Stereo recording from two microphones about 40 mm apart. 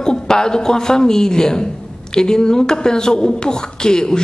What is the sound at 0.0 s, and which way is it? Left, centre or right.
Speech, centre.